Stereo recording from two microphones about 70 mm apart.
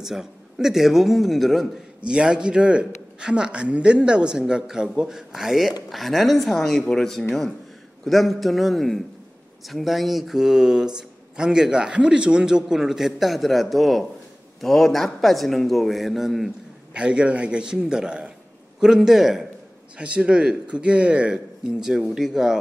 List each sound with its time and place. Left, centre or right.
0.0 s a man's voice: centre
2.0 s a man's voice: centre
16.9 s a man's voice: centre
20.0 s a man's voice: centre